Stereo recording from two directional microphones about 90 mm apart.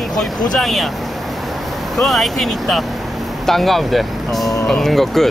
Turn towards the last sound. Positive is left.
turn(degrees=5)  # may be behind; listen again after turning